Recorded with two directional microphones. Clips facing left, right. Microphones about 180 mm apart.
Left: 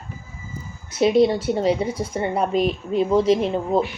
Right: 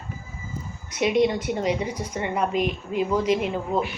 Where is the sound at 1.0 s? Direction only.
30° left (ahead or behind).